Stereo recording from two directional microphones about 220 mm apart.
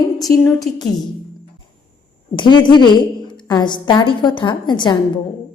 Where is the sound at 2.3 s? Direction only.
20° left (ahead or behind).